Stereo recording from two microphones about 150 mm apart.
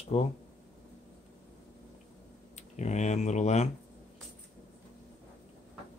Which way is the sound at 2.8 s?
50° left (ahead or behind).